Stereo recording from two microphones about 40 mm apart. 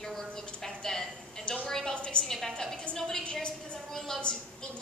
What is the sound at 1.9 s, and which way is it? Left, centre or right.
Speech, left.